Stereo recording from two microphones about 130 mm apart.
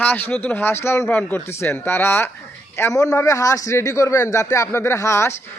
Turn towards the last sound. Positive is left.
turn(degrees=20)  # may be behind; listen again after turning